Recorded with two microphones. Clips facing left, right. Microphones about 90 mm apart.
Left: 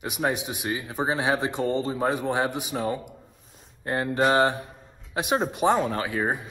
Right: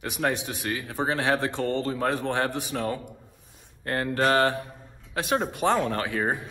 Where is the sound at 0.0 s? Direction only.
10° left (ahead or behind).